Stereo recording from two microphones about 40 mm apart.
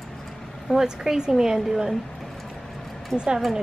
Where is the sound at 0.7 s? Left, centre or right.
Centre.